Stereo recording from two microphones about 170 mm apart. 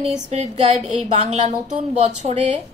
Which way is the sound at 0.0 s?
40° right (ahead or behind).